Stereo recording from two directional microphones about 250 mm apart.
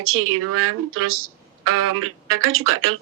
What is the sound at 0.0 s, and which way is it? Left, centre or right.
Speech, right.